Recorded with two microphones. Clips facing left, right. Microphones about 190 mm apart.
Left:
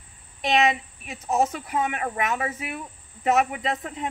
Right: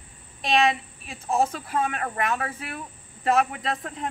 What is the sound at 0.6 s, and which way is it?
A woman's voice, 20° left (ahead or behind).